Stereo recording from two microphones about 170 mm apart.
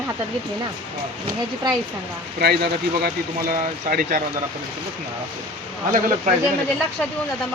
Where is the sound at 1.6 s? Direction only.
25° right (ahead or behind).